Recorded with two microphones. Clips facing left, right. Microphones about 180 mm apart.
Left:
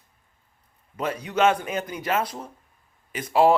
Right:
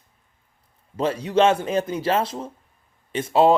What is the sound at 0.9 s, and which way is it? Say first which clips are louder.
Speech: right 6 dB; 30° right (ahead or behind).